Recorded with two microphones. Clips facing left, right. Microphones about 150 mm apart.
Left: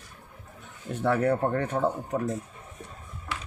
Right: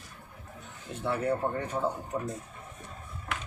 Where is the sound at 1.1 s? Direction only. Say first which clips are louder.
Left 5 dB; 70° left (ahead or behind).